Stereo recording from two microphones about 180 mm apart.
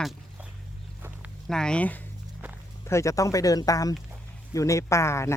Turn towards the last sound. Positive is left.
turn(degrees=15)  # may be behind; listen again after turning